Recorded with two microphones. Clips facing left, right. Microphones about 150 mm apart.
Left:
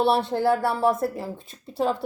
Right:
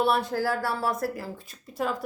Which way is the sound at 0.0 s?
30° left (ahead or behind).